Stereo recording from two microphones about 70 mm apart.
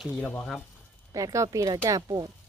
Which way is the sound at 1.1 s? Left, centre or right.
Right.